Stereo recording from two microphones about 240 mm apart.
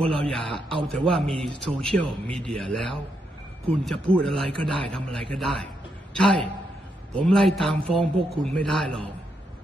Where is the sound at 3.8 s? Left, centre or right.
Centre.